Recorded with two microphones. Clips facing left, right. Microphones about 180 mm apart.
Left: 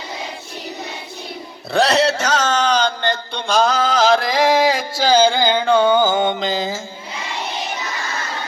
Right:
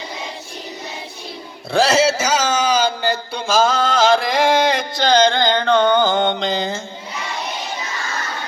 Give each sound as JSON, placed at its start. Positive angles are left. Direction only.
{"t": 1.7, "sound": "a man's voice", "side_deg": 0}